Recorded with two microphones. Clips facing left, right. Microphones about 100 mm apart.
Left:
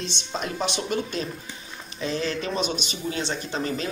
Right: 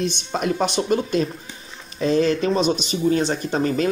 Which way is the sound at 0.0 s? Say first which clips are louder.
Right 7 dB; 50° right (ahead or behind).